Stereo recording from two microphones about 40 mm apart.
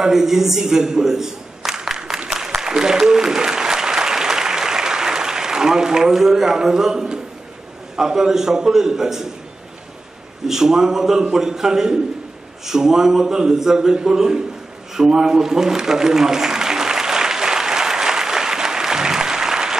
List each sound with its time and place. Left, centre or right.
0.0 s a man's voice: centre
2.2 s applause: centre
7.9 s a man's voice: centre
10.4 s a man's voice: centre
15.0 s applause: centre